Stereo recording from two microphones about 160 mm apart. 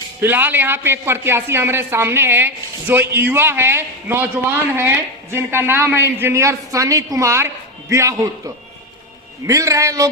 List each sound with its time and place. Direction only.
0.2 s a man's voice: 10° right (ahead or behind)
9.5 s a man's voice: 20° right (ahead or behind)